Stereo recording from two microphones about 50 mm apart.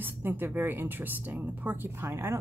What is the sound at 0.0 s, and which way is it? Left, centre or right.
A woman's voice, right.